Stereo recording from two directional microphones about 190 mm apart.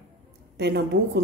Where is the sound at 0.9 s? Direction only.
65° right (ahead or behind).